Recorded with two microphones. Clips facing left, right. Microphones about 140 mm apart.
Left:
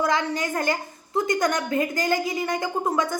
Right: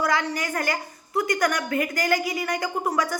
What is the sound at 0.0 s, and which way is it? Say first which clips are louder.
Speech: left 1 dB; 25° left (ahead or behind).